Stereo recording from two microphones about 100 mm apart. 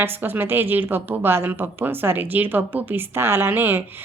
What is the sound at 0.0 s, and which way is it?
A woman's voice, 20° right (ahead or behind).